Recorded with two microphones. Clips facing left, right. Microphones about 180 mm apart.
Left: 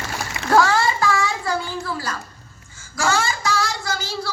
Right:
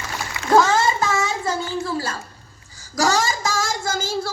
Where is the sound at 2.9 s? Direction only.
40° right (ahead or behind).